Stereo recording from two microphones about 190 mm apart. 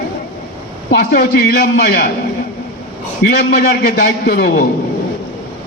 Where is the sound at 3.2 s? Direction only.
55° left (ahead or behind).